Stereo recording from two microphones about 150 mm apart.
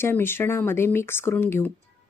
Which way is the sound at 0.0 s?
15° left (ahead or behind).